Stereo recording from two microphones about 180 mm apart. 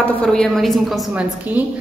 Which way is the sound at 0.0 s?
5° left (ahead or behind).